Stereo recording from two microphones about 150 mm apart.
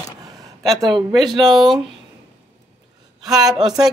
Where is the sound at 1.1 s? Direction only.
Centre (ahead or behind).